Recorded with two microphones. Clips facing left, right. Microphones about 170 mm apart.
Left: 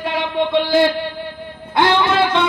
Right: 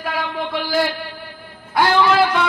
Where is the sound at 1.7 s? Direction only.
25° left (ahead or behind).